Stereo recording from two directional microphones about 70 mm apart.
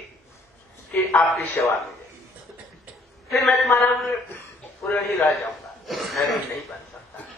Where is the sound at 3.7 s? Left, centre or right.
Left.